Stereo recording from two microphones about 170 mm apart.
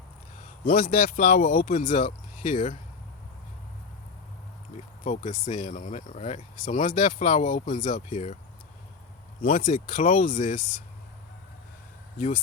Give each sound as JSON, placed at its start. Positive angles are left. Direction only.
{"t": 0.6, "sound": "speech", "side_deg": 55}
{"t": 5.0, "sound": "speech", "side_deg": 45}
{"t": 9.4, "sound": "speech", "side_deg": 55}